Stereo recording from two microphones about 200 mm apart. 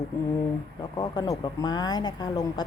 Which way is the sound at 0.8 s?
20° left (ahead or behind).